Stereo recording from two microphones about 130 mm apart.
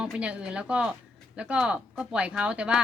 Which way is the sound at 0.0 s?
10° right (ahead or behind).